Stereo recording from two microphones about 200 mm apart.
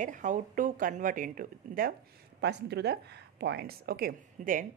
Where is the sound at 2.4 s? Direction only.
55° right (ahead or behind).